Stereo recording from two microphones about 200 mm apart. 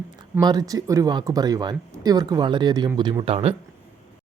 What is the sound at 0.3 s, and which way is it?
Speech, 20° right (ahead or behind).